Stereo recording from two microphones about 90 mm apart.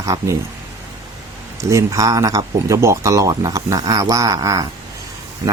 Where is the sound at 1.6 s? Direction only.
35° right (ahead or behind).